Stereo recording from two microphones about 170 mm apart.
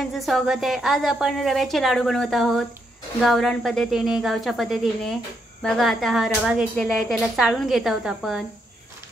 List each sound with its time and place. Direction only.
0.0 s speech: centre (ahead or behind)